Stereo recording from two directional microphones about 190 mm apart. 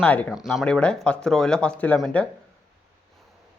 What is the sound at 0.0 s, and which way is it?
Speech, 5° left (ahead or behind).